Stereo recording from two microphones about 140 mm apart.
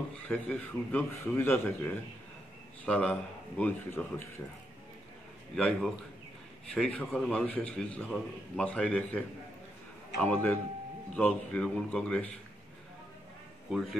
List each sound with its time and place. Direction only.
0.3 s a man's voice: 10° left (ahead or behind)
5.6 s a man's voice: centre (ahead or behind)
10.2 s a man's voice: 15° left (ahead or behind)
13.7 s a man's voice: centre (ahead or behind)